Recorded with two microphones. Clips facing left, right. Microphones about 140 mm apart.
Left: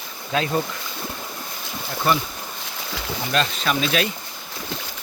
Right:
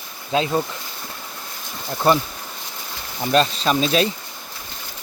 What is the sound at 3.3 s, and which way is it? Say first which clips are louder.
Speech: right 5 dB; 35° right (ahead or behind).